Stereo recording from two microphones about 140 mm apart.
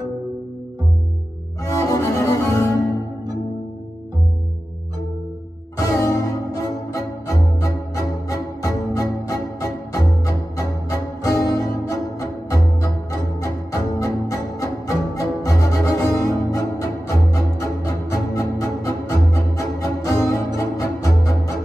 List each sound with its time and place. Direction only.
1.6 s cello: 25° left (ahead or behind)
5.8 s music: 25° left (ahead or behind)